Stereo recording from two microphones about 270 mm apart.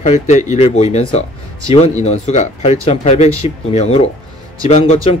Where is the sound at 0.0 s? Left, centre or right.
Left.